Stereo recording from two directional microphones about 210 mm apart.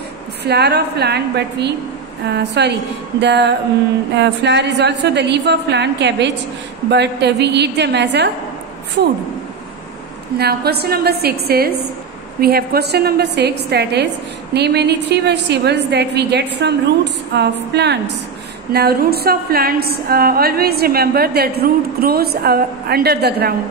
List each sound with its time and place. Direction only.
0.4 s a woman's voice: 50° right (ahead or behind)
10.3 s a woman's voice: 50° right (ahead or behind)